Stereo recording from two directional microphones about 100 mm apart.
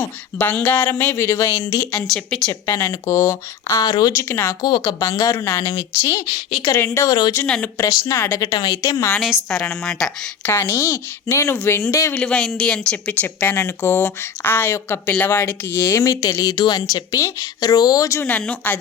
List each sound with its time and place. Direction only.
0.0 s a sound: 20° left (ahead or behind)
0.9 s speech: 20° left (ahead or behind)
1.9 s speech: 10° left (ahead or behind)
2.5 s speech: 25° left (ahead or behind); by 4.1 s 40° left (ahead or behind)
4.1 s speech: 25° left (ahead or behind)
4.6 s speech: 45° left (ahead or behind); by 7.2 s 30° left (ahead or behind)
7.4 s a sound: 10° left (ahead or behind)
7.8 s speech: 35° left (ahead or behind)
9.2 s speech: 5° right (ahead or behind)
9.6 s a sound: 10° left (ahead or behind)
10.4 s speech: 25° left (ahead or behind)
12.1 s speech: 10° left (ahead or behind); by 18.2 s 35° left (ahead or behind)
18.2 s a sound: 15° left (ahead or behind)